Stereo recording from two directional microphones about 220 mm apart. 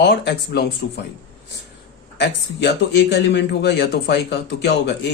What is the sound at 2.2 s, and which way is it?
Speech, 50° left (ahead or behind).